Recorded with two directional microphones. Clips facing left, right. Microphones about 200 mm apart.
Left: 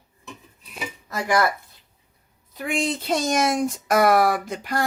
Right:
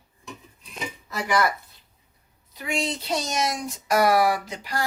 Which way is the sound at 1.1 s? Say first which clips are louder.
Left 2 dB; 45° left (ahead or behind).